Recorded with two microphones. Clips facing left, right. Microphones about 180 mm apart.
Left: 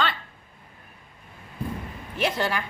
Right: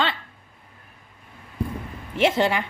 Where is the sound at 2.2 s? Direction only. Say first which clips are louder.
Right 6 dB; 25° right (ahead or behind).